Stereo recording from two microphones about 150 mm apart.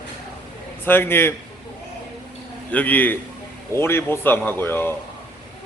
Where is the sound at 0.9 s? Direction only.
15° left (ahead or behind).